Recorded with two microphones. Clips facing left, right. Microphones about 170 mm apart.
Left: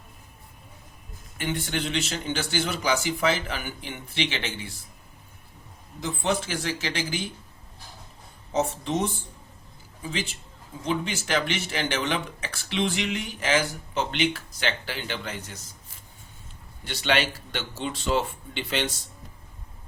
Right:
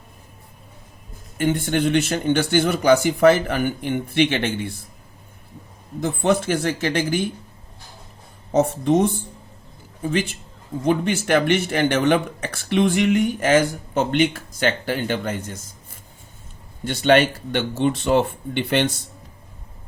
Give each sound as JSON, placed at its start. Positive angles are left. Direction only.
{"t": 1.4, "sound": "speech", "side_deg": -50}
{"t": 6.0, "sound": "speech", "side_deg": -55}
{"t": 8.5, "sound": "speech", "side_deg": -55}